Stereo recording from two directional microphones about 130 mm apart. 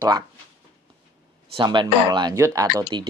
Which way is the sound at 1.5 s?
35° right (ahead or behind).